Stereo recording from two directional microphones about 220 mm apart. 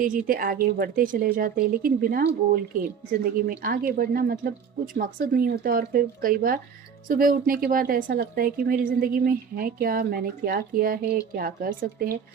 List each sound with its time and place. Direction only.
0.0 s a woman's voice: 40° right (ahead or behind)
3.6 s a woman's voice: 40° right (ahead or behind)